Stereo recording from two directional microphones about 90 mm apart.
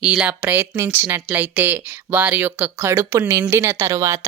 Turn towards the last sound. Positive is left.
turn(degrees=-40)  # may be behind; listen again after turning